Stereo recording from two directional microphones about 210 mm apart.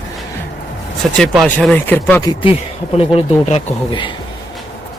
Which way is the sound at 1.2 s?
5° left (ahead or behind).